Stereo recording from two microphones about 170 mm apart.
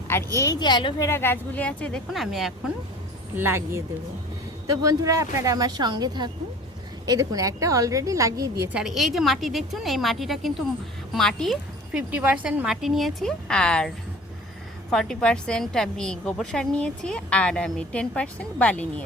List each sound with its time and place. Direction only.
0.3 s a woman's voice: 20° left (ahead or behind); by 2.5 s centre (ahead or behind)
3.3 s speech: 15° right (ahead or behind)
8.7 s a woman's voice: centre (ahead or behind)
11.9 s a woman's voice: 10° right (ahead or behind); by 19.0 s 10° left (ahead or behind)